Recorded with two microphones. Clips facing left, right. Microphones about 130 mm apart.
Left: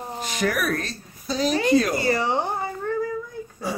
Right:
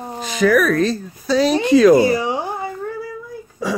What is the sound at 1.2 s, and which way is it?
Speech, 75° right (ahead or behind).